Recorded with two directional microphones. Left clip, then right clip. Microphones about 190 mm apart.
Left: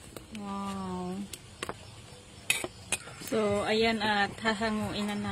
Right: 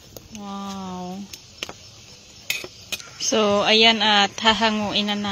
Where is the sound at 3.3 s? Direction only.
30° right (ahead or behind).